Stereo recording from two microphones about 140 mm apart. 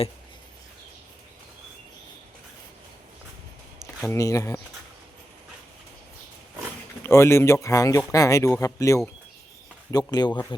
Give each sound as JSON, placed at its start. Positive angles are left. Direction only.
{"t": 4.0, "sound": "speech", "side_deg": 20}
{"t": 7.0, "sound": "speech", "side_deg": 20}